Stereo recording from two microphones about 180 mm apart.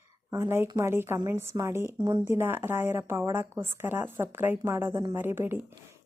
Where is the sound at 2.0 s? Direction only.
25° right (ahead or behind).